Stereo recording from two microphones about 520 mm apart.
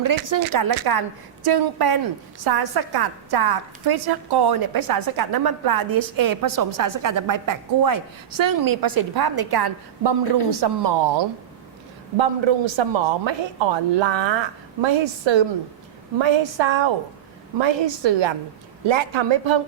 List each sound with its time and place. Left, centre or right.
0.0 s a woman's voice: right
12.1 s a woman's voice: right